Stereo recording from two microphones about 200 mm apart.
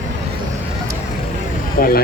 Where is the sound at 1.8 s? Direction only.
45° left (ahead or behind).